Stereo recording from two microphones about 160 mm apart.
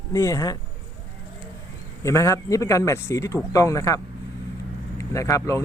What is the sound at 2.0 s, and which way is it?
Speech, 20° left (ahead or behind).